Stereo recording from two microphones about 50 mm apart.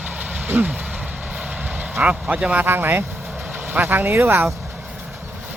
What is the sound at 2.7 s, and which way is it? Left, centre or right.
Speech, right.